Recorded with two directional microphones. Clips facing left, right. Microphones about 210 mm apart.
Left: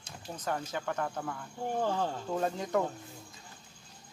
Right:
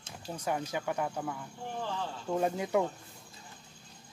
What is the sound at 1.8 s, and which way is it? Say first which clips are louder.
Cricket: left 6 dB; 45° left (ahead or behind).